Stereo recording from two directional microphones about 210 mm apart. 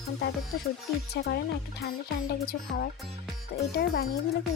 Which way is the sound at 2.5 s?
45° left (ahead or behind).